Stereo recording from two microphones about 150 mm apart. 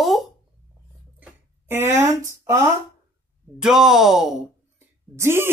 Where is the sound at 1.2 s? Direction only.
15° right (ahead or behind).